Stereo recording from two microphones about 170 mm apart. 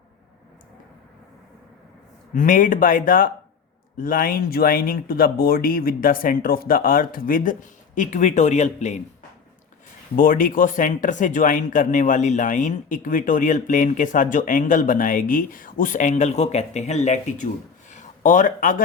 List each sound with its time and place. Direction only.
2.3 s speech: 50° left (ahead or behind)
10.2 s speech: 55° left (ahead or behind)
17.9 s a sound: 50° left (ahead or behind)